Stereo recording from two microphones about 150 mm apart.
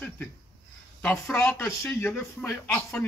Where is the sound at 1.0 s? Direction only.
15° left (ahead or behind).